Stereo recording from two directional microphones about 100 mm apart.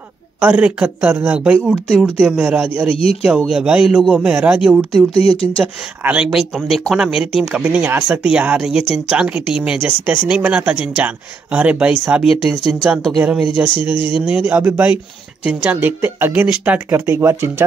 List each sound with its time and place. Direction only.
0.4 s speech: 15° right (ahead or behind)
2.9 s speech: 75° left (ahead or behind)
3.3 s speech: 5° right (ahead or behind)
5.1 s speech: 75° left (ahead or behind)
6.0 s speech: 10° right (ahead or behind)
13.9 s speech: 55° left (ahead or behind)
14.2 s speech: 15° right (ahead or behind)